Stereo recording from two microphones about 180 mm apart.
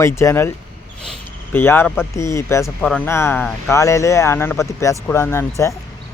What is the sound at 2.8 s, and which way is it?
Speech, 5° left (ahead or behind).